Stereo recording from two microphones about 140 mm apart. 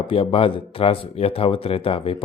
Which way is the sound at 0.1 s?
40° left (ahead or behind).